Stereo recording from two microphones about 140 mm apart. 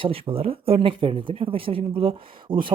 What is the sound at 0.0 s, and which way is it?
Speech, 40° right (ahead or behind).